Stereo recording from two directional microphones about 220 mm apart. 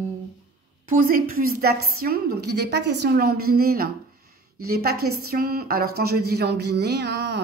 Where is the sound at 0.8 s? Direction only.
40° right (ahead or behind).